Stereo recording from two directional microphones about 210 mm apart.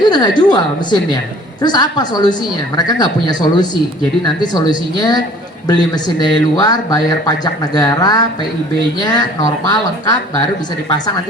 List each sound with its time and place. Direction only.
0.0 s speech: 20° left (ahead or behind)